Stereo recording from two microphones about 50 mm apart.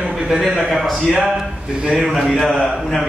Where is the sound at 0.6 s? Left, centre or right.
Centre.